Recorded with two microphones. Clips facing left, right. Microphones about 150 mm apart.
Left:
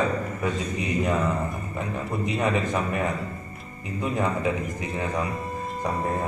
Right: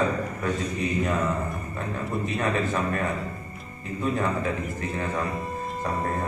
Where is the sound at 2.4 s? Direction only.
15° left (ahead or behind).